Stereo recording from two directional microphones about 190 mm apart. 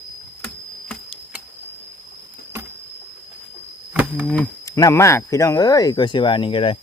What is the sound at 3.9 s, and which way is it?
Insect, 5° right (ahead or behind).